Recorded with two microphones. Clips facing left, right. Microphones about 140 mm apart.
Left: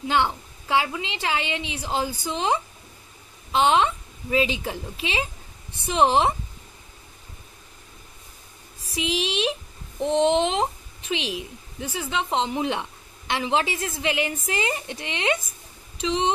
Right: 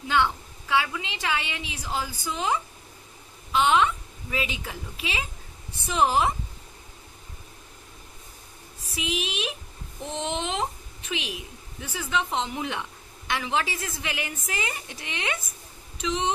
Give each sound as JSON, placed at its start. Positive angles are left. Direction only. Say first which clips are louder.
{"t": 0.1, "sound": "a woman's voice", "louder": "left 1 dB", "side_deg": 25}
{"t": 8.9, "sound": "a woman's voice", "louder": "left 5 dB", "side_deg": 30}